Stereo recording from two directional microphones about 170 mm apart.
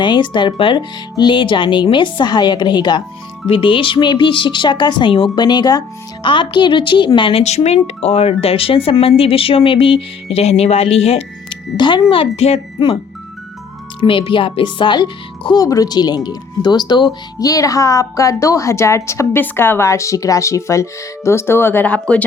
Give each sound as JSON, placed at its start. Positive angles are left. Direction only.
{"t": 0.0, "sound": "speech", "side_deg": 25}
{"t": 14.0, "sound": "a woman's voice", "side_deg": 30}